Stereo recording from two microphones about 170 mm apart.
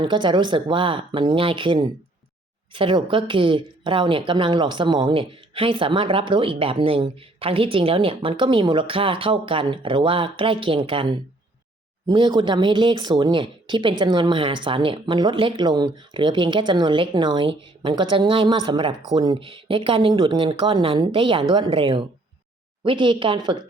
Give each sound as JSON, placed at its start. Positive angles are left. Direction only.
{"t": 0.0, "sound": "a woman's voice", "side_deg": -30}